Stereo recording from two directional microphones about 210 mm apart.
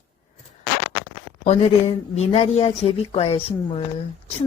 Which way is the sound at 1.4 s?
30° left (ahead or behind).